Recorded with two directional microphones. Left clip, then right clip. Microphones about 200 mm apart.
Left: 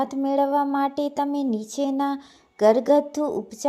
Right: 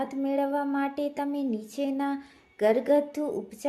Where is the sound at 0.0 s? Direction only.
25° left (ahead or behind).